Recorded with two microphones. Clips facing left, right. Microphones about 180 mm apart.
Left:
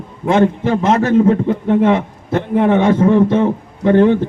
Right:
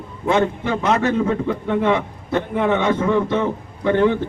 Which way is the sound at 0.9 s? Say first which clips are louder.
Left 7 dB; 45° left (ahead or behind).